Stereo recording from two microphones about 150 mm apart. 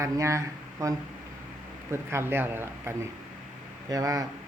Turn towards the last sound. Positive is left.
turn(degrees=-25)  # may be behind; listen again after turning